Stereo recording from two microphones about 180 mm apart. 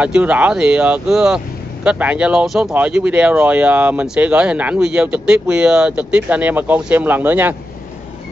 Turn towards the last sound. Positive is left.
turn(degrees=-10)  # may be behind; listen again after turning